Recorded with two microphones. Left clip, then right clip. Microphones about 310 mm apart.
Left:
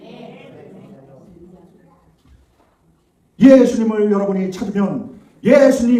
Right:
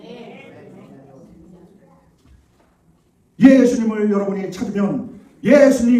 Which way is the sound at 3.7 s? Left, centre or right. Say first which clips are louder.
Left 3 dB; centre.